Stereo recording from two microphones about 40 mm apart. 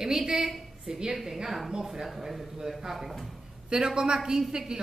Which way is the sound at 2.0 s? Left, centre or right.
Centre.